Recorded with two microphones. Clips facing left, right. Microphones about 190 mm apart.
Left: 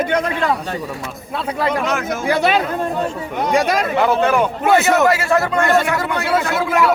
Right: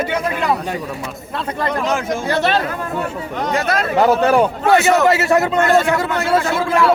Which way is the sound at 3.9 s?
40° right (ahead or behind).